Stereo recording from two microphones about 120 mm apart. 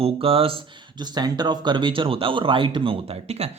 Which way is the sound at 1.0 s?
35° right (ahead or behind).